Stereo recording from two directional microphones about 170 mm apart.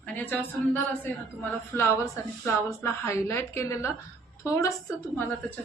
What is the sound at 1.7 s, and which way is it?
A woman's voice, 15° left (ahead or behind).